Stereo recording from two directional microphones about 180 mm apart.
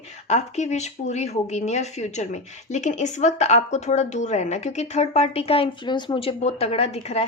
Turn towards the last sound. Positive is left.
turn(degrees=35)  # may be behind; listen again after turning